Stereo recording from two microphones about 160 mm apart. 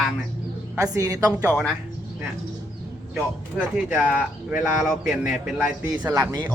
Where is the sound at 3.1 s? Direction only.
5° right (ahead or behind).